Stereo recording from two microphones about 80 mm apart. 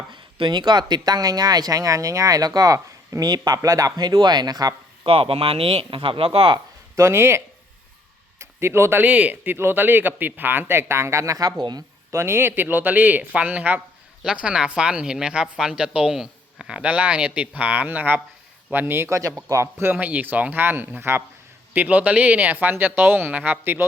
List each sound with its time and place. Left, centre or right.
0.1 s speech: right
3.2 s speech: right
5.9 s speech: right
6.9 s speech: right
9.0 s speech: centre; by 11.5 s right
12.1 s a woman's voice: right
21.7 s speech: centre